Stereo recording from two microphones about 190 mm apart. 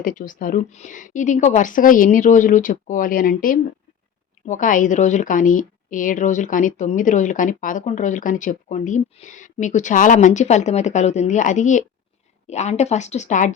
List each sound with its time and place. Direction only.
0.0 s a woman's voice: 45° left (ahead or behind)